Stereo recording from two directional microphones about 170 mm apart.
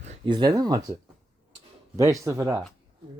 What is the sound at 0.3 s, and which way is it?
Speech, 25° right (ahead or behind).